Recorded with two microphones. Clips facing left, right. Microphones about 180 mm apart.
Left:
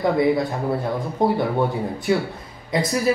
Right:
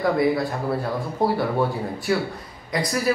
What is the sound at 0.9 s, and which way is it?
Speech, 20° left (ahead or behind).